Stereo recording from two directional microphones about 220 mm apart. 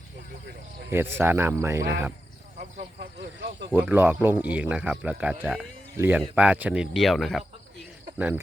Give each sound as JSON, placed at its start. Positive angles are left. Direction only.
{"t": 0.9, "sound": "speech", "side_deg": -10}
{"t": 2.6, "sound": "snake", "side_deg": -45}
{"t": 3.7, "sound": "speech", "side_deg": -10}